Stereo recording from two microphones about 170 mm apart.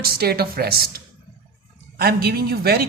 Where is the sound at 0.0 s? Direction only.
65° right (ahead or behind).